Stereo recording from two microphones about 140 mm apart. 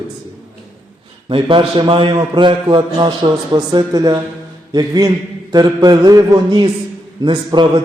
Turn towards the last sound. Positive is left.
turn(degrees=-30)  # may be behind; listen again after turning